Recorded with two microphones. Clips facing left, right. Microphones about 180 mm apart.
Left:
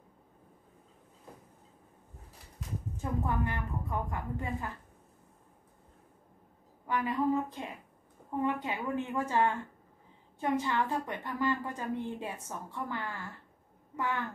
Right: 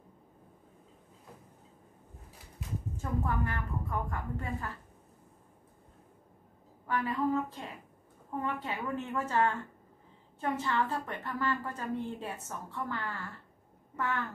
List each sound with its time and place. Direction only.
3.0 s a woman's voice: 15° left (ahead or behind)
6.9 s a woman's voice: 15° left (ahead or behind)